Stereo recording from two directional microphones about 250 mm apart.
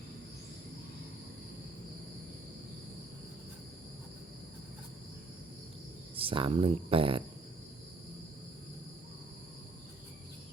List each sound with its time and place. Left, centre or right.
6.1 s speech: right